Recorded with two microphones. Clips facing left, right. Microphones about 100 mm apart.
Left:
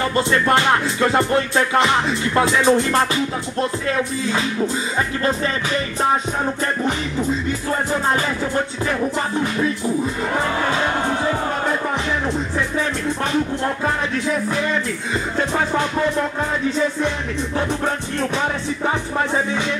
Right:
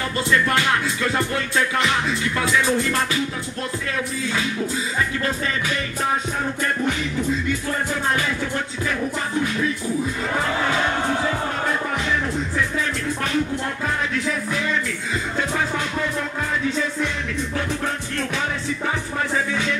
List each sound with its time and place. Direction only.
0.1 s music: 30° left (ahead or behind)